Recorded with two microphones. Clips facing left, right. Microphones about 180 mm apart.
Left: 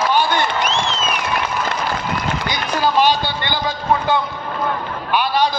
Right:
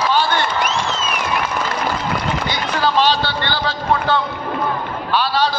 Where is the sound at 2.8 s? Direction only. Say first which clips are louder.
Left 1 dB; 15° left (ahead or behind).